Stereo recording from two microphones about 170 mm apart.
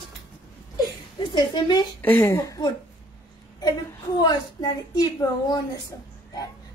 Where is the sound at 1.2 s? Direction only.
25° left (ahead or behind).